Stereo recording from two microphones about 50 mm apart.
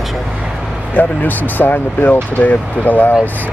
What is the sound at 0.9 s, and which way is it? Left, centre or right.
Speech, left.